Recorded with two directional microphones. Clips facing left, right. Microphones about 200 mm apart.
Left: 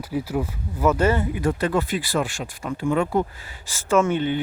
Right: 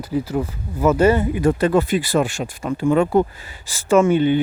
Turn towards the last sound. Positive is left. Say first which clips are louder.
# right 5 dB
turn(degrees=-10)  # may be behind; listen again after turning